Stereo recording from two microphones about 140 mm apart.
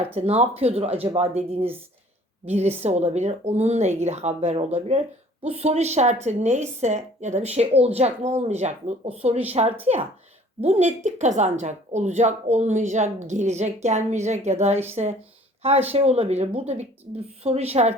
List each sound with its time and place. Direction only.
0.0 s a woman's voice: 45° right (ahead or behind)